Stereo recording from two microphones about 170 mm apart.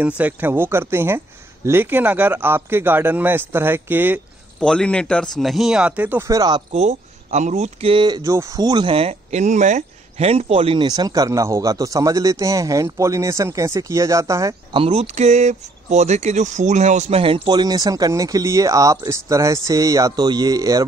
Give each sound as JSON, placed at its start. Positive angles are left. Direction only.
{"t": 0.0, "sound": "speech", "side_deg": -10}
{"t": 4.6, "sound": "a man's voice", "side_deg": 5}
{"t": 6.7, "sound": "speech", "side_deg": -40}
{"t": 14.7, "sound": "speech", "side_deg": -35}